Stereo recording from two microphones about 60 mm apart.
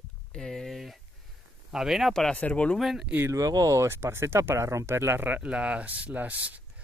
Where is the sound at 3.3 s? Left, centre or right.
Right.